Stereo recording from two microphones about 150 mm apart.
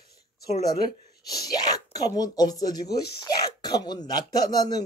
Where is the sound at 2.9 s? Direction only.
90° left.